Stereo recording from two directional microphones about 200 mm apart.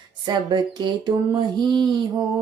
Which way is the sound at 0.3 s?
20° right (ahead or behind).